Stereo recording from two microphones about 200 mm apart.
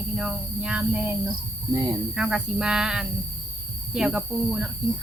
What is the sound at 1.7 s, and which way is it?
Speech, 15° right (ahead or behind).